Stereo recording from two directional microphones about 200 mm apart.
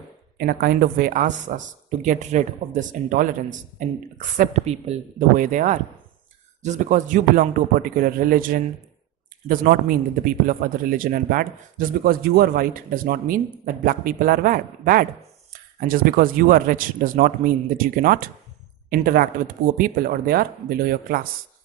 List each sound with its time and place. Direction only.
0.3 s a man's voice: 50° right (ahead or behind)